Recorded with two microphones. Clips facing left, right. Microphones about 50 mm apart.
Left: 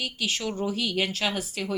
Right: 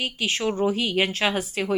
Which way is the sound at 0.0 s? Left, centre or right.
Right.